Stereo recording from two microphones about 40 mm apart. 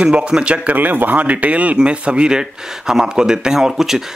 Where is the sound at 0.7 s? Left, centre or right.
Right.